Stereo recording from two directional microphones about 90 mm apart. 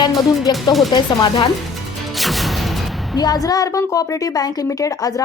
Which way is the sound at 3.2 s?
45° left (ahead or behind).